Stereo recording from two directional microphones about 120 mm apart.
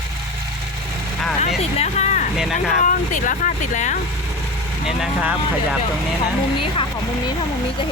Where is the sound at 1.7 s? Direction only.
70° left (ahead or behind).